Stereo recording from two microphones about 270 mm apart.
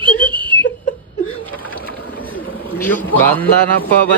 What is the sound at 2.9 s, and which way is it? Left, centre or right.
Speech, centre.